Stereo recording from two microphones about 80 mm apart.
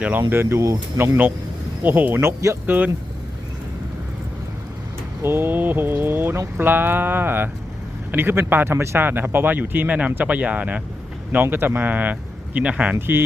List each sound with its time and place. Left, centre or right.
0.2 s speech: right
2.6 s speech: right
5.2 s speech: right; by 13.0 s centre
13.0 s speech: right